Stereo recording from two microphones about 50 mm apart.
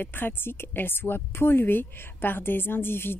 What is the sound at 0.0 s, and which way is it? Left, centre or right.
Speech, left.